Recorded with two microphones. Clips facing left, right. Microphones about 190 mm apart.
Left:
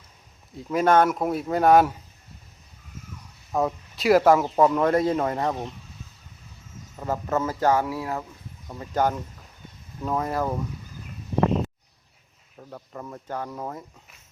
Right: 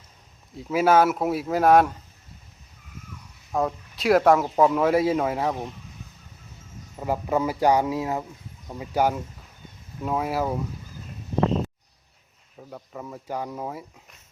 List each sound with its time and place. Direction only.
0.5 s speech: 5° right (ahead or behind)
3.5 s speech: centre (ahead or behind)
7.0 s speech: 10° right (ahead or behind)
12.5 s speech: 5° right (ahead or behind)